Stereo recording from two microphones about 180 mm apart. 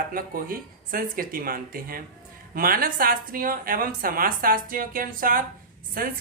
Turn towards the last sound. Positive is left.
turn(degrees=-55)  # may be behind; listen again after turning